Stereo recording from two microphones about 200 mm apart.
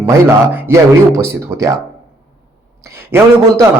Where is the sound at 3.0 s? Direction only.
10° right (ahead or behind).